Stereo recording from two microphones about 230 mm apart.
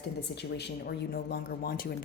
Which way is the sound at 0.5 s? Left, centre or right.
Left.